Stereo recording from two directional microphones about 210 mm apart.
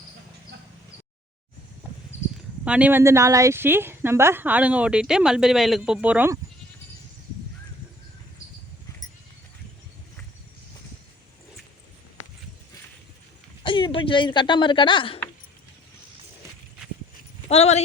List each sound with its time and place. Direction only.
1.8 s a sound: 10° right (ahead or behind)
2.6 s speech: 5° right (ahead or behind)
13.6 s speech: 25° left (ahead or behind)
17.5 s speech: 30° left (ahead or behind)